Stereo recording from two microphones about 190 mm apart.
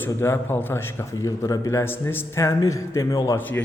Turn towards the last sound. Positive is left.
turn(degrees=10)  # may be behind; listen again after turning